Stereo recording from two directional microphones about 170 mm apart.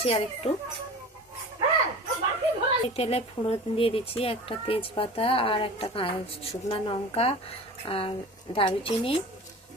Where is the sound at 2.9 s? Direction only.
35° left (ahead or behind).